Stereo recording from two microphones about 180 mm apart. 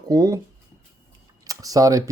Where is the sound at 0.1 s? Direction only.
20° right (ahead or behind).